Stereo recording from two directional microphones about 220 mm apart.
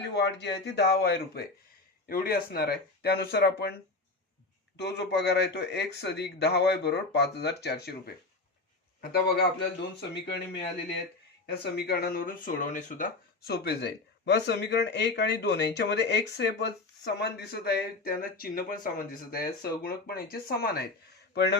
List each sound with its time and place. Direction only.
0.0 s speech: 50° left (ahead or behind)
4.8 s speech: 50° left (ahead or behind)
9.0 s speech: 45° left (ahead or behind)
11.6 s speech: 45° left (ahead or behind)